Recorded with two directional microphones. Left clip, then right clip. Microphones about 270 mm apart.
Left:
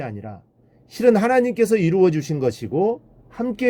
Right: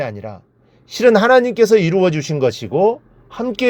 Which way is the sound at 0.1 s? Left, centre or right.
Centre.